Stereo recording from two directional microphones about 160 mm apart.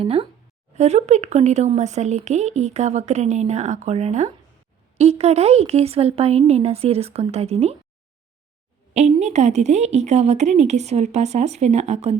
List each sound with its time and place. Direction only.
0.0 s speech: 40° right (ahead or behind)
8.9 s speech: 45° right (ahead or behind)